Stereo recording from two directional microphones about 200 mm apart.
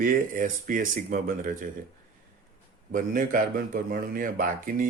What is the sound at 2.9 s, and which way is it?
Speech, 45° right (ahead or behind).